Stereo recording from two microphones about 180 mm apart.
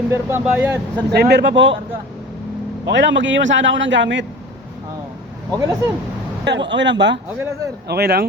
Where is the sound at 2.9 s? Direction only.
80° right.